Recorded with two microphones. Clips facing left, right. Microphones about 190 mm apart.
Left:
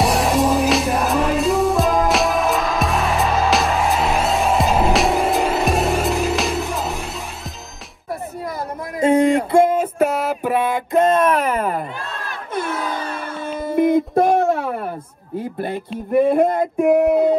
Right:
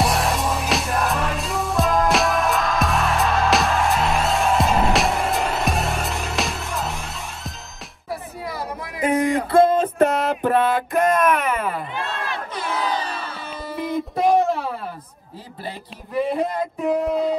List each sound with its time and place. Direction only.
0.0 s music: centre (ahead or behind)
9.0 s music: 30° left (ahead or behind)
9.5 s a sound: 15° left (ahead or behind); by 11.8 s 40° left (ahead or behind)
12.5 s music: 50° left (ahead or behind)
15.3 s speech: 55° left (ahead or behind)